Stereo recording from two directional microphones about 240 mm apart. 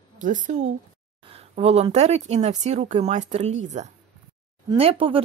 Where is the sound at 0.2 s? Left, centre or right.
Right.